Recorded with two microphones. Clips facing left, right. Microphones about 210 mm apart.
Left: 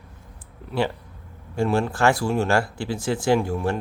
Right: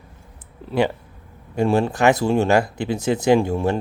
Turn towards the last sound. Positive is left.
turn(degrees=-25)  # may be behind; listen again after turning